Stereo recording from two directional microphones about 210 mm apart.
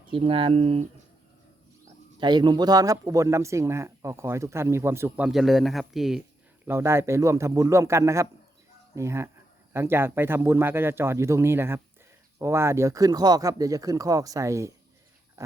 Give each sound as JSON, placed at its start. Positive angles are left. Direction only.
{"t": 0.1, "sound": "speech", "side_deg": -25}
{"t": 2.2, "sound": "speech", "side_deg": -20}
{"t": 6.7, "sound": "speech", "side_deg": -10}
{"t": 15.4, "sound": "dog", "side_deg": -15}